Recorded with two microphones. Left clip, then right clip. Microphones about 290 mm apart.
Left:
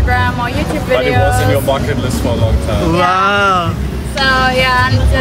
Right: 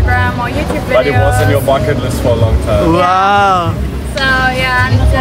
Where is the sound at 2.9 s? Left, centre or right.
Centre.